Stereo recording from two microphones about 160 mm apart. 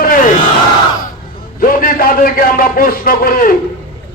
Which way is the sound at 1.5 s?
65° left (ahead or behind).